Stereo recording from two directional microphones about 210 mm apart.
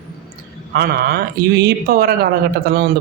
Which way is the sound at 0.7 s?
50° right (ahead or behind).